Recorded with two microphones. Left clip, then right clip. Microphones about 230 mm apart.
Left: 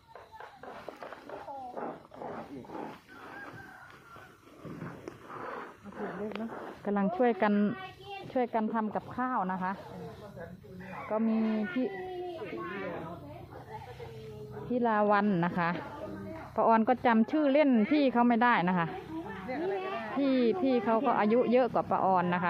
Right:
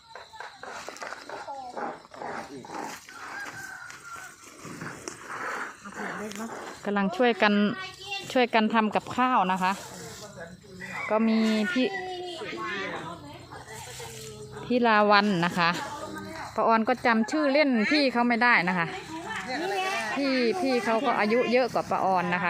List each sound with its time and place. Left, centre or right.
1.3 s dog: centre
5.0 s dog: centre
6.8 s a woman's voice: centre
11.1 s speech: right
12.6 s a sound: right
14.7 s a woman's voice: centre
19.5 s a sound: centre
20.1 s speech: centre